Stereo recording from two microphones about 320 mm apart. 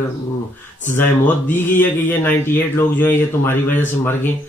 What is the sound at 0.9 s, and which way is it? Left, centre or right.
Speech, centre.